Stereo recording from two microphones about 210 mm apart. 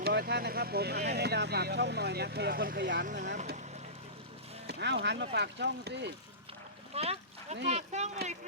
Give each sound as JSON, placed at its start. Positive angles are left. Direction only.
{"t": 0.0, "sound": "speech", "side_deg": -50}
{"t": 4.6, "sound": "speech", "side_deg": -55}
{"t": 6.9, "sound": "speech", "side_deg": -30}